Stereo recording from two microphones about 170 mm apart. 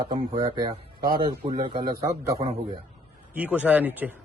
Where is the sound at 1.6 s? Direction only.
30° right (ahead or behind).